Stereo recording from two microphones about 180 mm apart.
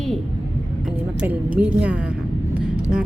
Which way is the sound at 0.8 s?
5° right (ahead or behind).